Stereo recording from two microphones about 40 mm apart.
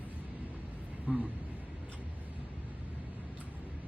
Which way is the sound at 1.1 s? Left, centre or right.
Right.